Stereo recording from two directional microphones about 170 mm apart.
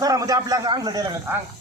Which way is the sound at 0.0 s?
20° right (ahead or behind).